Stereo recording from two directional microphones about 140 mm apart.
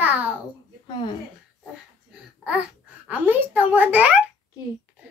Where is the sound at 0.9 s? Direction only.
35° left (ahead or behind).